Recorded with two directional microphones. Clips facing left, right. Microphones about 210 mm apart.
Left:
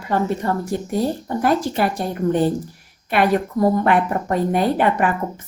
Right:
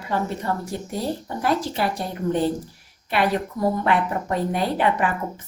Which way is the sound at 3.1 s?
50° left (ahead or behind).